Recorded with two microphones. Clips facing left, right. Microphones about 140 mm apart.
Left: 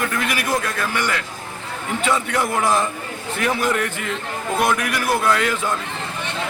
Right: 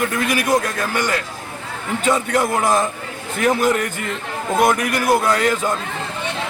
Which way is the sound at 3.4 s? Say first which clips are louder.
Right 4 dB; 40° right (ahead or behind).